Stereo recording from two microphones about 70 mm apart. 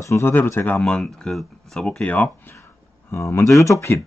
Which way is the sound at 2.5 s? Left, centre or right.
Left.